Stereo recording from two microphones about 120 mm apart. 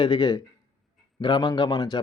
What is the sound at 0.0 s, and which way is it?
Speech, 40° left (ahead or behind).